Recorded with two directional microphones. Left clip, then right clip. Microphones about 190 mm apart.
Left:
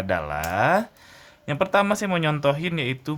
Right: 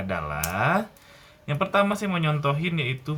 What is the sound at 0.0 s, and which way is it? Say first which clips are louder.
A man's voice: left 4 dB; 50° left (ahead or behind).